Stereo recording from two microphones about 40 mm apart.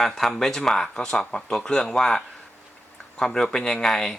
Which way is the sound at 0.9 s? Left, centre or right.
Centre.